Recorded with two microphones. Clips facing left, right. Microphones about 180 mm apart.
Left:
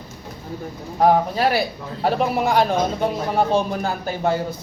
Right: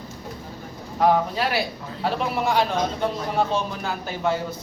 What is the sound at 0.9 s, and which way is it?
Speech, 40° left (ahead or behind).